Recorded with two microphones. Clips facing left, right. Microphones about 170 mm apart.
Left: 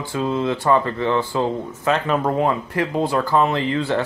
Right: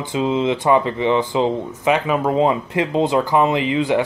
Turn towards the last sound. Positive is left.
turn(degrees=-15)  # may be behind; listen again after turning